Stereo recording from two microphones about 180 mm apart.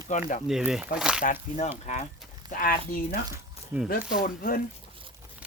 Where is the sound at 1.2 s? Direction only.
40° left (ahead or behind).